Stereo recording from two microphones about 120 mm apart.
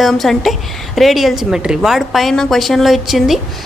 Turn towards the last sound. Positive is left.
turn(degrees=0)  # may be behind; listen again after turning